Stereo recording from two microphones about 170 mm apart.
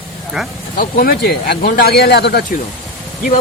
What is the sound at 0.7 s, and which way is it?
Speech, 60° left (ahead or behind).